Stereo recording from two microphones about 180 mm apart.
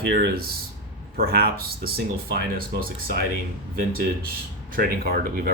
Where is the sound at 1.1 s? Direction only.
55° right (ahead or behind).